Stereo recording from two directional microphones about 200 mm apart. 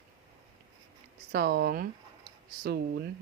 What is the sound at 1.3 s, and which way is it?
Speech, 50° right (ahead or behind).